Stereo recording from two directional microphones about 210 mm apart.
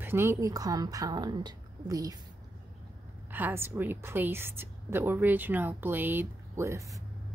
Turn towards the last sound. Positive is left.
turn(degrees=-15)  # may be behind; listen again after turning